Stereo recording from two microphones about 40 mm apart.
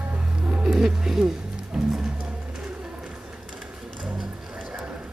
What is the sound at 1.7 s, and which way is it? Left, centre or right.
Music, centre.